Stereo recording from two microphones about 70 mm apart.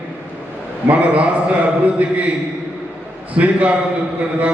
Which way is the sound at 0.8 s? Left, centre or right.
Right.